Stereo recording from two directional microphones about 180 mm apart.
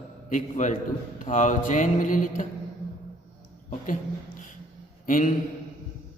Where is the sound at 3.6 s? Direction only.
45° left (ahead or behind).